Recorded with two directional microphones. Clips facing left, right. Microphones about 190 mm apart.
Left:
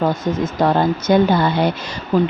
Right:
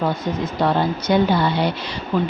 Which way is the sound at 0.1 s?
45° left (ahead or behind).